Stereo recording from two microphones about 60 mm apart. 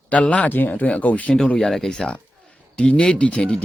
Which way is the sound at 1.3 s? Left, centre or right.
Centre.